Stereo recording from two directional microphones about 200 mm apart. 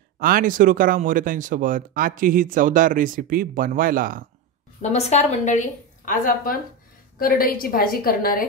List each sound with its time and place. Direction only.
0.2 s speech: 45° right (ahead or behind)
4.8 s a woman's voice: 35° left (ahead or behind)